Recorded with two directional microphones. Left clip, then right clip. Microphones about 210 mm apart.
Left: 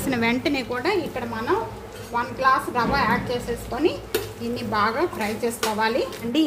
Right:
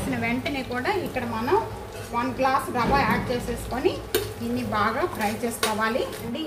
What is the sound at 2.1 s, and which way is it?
Speech, 35° left (ahead or behind).